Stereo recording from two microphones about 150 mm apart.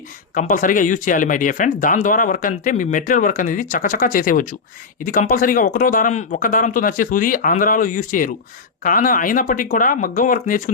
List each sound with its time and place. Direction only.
0.3 s speech: 65° left (ahead or behind)